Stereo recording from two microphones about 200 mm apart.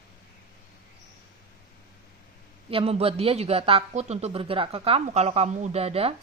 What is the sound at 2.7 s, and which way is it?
Speech, 30° right (ahead or behind).